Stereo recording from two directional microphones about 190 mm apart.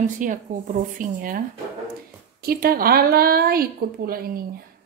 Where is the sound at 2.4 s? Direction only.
50° right (ahead or behind).